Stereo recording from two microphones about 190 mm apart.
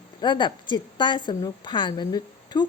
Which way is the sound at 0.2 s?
25° left (ahead or behind).